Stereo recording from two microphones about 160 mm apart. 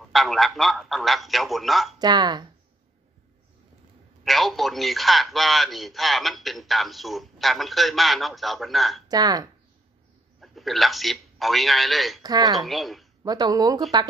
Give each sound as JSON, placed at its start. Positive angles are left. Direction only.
{"t": 0.1, "sound": "a man's voice", "side_deg": 0}
{"t": 2.0, "sound": "speech", "side_deg": -25}
{"t": 4.2, "sound": "a man's voice", "side_deg": 0}
{"t": 9.1, "sound": "speech", "side_deg": -25}
{"t": 10.4, "sound": "a man's voice", "side_deg": 0}
{"t": 12.2, "sound": "speech", "side_deg": -25}
{"t": 12.5, "sound": "a man's voice", "side_deg": 0}
{"t": 13.2, "sound": "speech", "side_deg": -25}